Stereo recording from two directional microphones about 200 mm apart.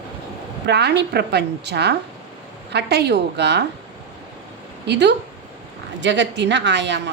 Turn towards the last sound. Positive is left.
turn(degrees=-60)  # may be behind; listen again after turning